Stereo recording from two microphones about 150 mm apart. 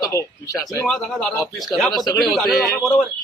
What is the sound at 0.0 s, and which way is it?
Speech, 20° left (ahead or behind).